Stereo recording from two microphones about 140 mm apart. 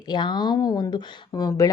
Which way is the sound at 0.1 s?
30° left (ahead or behind).